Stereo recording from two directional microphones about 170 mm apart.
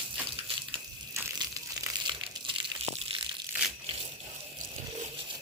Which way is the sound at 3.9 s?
35° right (ahead or behind).